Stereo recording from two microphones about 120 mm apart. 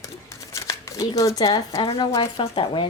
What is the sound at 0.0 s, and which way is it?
Crumpling, 25° left (ahead or behind).